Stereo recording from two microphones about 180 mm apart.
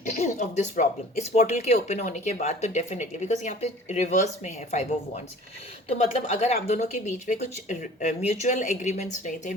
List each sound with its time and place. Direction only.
0.1 s speech: 40° left (ahead or behind)
6.2 s speech: 35° left (ahead or behind)